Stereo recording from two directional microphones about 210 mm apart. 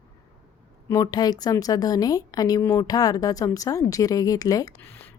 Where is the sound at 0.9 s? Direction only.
20° left (ahead or behind).